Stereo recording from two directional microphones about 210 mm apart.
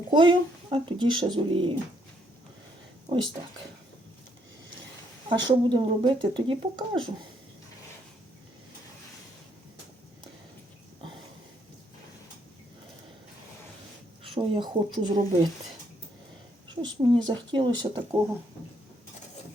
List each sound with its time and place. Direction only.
0.1 s speech: 25° right (ahead or behind)
5.3 s speech: 20° right (ahead or behind)
14.3 s speech: 25° right (ahead or behind)
16.6 s speech: 20° right (ahead or behind)